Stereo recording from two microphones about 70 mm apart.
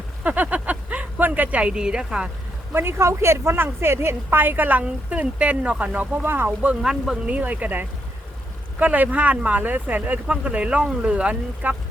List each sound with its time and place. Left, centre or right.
0.3 s speech: right
2.7 s a woman's voice: right
6.8 s speech: centre
7.3 s a woman's voice: right